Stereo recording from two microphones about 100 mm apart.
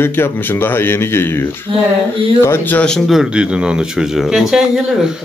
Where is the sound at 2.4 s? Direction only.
20° left (ahead or behind).